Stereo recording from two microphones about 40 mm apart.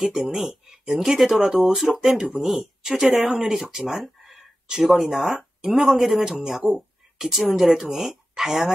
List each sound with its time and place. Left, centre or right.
0.0 s speech: centre
6.2 s speech: centre
6.7 s a sound: centre
7.4 s speech: centre